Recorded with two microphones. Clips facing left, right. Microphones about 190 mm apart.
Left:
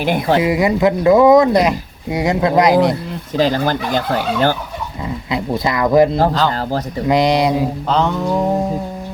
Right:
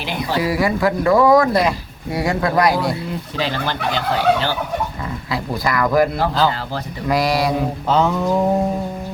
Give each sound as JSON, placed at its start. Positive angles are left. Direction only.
{"t": 0.0, "sound": "speech", "side_deg": 50}
{"t": 0.3, "sound": "speech", "side_deg": 20}
{"t": 3.3, "sound": "speech", "side_deg": 40}
{"t": 5.3, "sound": "speech", "side_deg": 20}
{"t": 7.1, "sound": "speech", "side_deg": 20}
{"t": 7.9, "sound": "a sound", "side_deg": 0}